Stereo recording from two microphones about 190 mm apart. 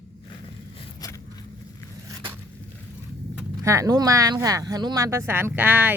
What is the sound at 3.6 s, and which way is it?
Speech, 15° right (ahead or behind).